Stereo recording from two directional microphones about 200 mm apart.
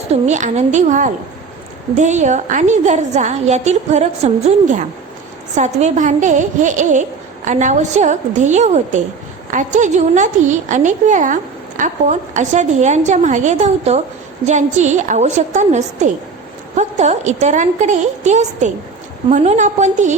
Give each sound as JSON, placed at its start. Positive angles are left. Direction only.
{"t": 0.1, "sound": "a woman's voice", "side_deg": -35}